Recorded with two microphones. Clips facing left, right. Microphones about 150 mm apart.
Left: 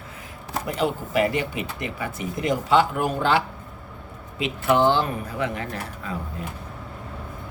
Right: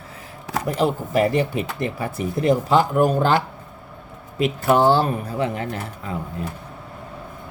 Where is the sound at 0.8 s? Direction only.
40° right (ahead or behind).